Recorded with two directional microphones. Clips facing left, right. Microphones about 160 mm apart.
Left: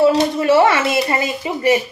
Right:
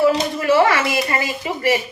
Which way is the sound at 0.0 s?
25° left (ahead or behind).